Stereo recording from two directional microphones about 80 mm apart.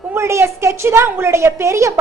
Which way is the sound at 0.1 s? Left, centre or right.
Right.